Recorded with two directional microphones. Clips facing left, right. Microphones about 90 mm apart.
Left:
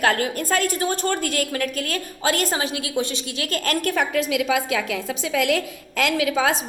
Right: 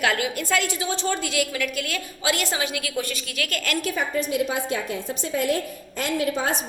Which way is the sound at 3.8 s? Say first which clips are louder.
Left 3 dB; 60° left (ahead or behind).